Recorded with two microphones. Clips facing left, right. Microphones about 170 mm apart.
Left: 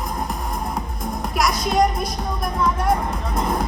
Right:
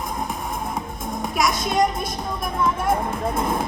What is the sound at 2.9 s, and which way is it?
Music, 50° right (ahead or behind).